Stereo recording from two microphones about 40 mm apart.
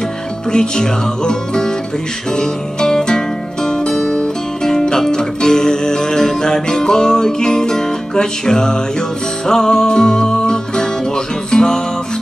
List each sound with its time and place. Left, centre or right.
0.5 s music: centre